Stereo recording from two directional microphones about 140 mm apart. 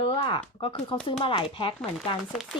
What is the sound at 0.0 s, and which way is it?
Speech, 40° left (ahead or behind).